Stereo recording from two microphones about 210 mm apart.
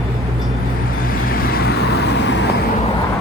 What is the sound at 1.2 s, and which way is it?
Vehicle, 45° left (ahead or behind).